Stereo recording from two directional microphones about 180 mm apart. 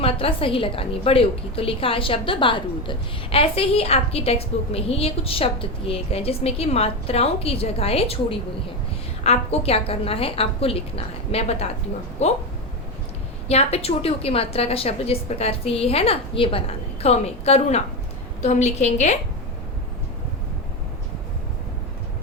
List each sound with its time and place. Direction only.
0.0 s a woman's voice: 30° left (ahead or behind)
13.5 s a woman's voice: 35° left (ahead or behind)